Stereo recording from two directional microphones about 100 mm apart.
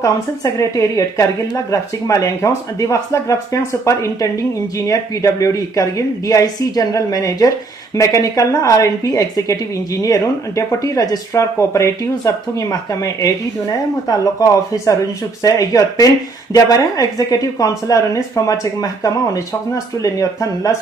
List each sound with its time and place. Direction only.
0.0 s speech: 35° left (ahead or behind)